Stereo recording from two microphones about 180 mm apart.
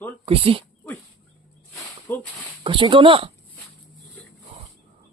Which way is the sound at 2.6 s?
25° right (ahead or behind).